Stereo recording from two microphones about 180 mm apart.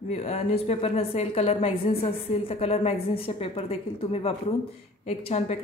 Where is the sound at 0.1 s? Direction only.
35° left (ahead or behind).